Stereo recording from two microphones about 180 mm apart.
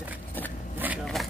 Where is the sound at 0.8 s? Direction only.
10° right (ahead or behind).